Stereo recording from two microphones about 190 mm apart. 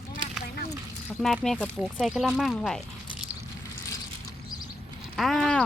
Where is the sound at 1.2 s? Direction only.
Centre (ahead or behind).